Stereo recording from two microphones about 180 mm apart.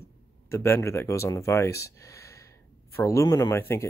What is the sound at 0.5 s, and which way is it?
Speech, 15° left (ahead or behind).